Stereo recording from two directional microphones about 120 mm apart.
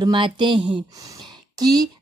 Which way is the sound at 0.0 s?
45° right (ahead or behind).